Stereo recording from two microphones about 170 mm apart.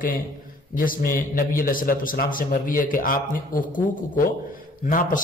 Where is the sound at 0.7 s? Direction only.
55° left (ahead or behind).